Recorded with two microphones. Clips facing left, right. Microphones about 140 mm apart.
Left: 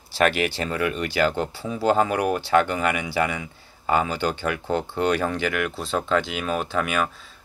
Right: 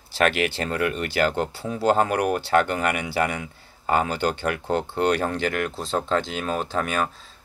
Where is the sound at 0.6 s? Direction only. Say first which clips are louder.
Even; 50° right (ahead or behind).